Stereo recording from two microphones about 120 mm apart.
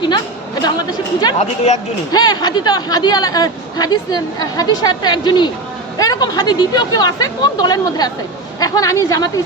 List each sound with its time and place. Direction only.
0.6 s a woman's voice: 35° left (ahead or behind)
1.4 s speech: 70° left (ahead or behind)
2.1 s a woman's voice: 35° left (ahead or behind)